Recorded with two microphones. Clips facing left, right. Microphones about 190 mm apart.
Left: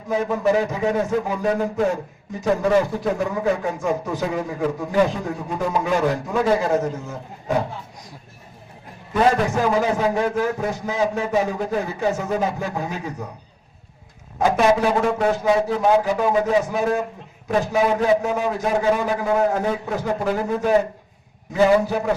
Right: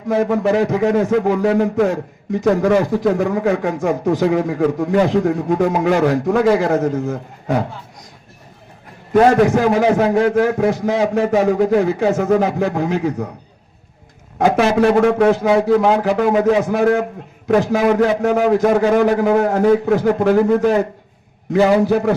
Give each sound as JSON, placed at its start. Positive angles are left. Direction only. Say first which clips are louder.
{"t": 0.1, "sound": "a man's voice", "louder": "right 4 dB", "side_deg": -70}
{"t": 9.3, "sound": "a man's voice", "louder": "right 6 dB", "side_deg": -70}
{"t": 14.3, "sound": "a man's voice", "louder": "right 3 dB", "side_deg": -70}